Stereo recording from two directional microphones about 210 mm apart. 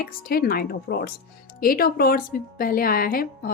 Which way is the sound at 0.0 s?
45° left (ahead or behind).